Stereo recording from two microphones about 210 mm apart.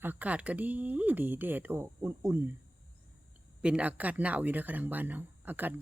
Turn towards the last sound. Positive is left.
turn(degrees=-10)  # may be behind; listen again after turning